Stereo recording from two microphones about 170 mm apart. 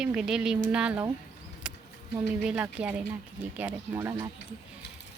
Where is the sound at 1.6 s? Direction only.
5° right (ahead or behind).